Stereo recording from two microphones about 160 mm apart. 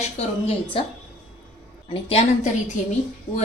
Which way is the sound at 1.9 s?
35° left (ahead or behind).